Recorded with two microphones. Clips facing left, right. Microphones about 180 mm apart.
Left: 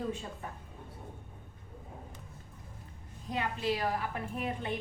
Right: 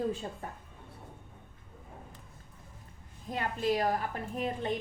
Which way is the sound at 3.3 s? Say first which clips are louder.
Right 3 dB; 45° right (ahead or behind).